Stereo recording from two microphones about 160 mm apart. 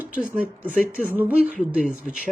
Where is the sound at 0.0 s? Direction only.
10° right (ahead or behind).